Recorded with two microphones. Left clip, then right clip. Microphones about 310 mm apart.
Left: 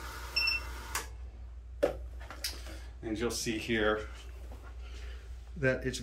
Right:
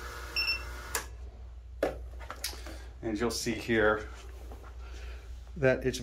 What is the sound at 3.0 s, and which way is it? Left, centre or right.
Speech, centre.